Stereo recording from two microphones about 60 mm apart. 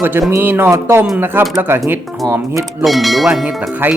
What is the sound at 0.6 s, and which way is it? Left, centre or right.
Speech, right.